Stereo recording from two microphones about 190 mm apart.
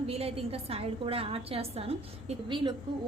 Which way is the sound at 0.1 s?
30° right (ahead or behind).